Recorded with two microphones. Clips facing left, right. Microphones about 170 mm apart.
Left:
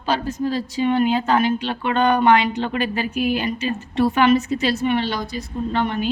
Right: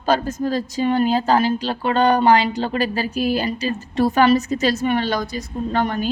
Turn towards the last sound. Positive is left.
turn(degrees=-40)  # may be behind; listen again after turning